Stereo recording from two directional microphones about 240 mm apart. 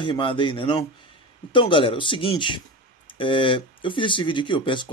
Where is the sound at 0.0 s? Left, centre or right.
Left.